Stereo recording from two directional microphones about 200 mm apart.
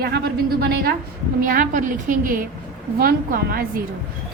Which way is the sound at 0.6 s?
50° right (ahead or behind).